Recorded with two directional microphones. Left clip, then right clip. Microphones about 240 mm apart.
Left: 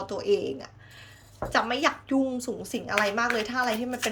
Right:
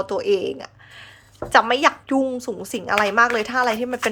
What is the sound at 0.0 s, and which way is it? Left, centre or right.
Speech, centre.